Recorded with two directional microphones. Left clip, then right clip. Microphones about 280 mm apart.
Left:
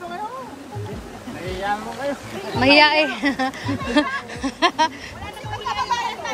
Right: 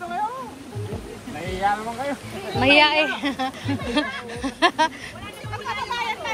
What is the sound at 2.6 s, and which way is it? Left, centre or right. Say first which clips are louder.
Speech: left 2 dB; centre.